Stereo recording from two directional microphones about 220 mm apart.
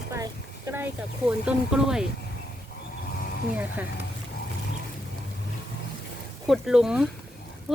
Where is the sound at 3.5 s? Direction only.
5° right (ahead or behind).